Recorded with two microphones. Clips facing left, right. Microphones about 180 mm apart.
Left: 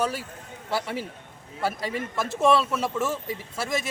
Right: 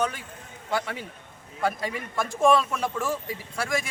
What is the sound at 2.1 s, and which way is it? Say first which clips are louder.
A man's voice: right 1 dB; 5° left (ahead or behind).